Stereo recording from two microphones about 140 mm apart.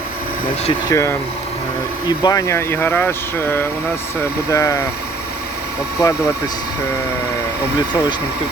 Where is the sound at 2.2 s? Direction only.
25° left (ahead or behind).